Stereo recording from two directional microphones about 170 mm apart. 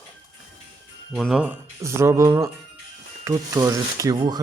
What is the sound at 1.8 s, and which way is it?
Music, 15° right (ahead or behind).